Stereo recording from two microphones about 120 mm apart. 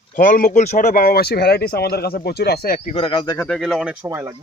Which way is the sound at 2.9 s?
45° left (ahead or behind).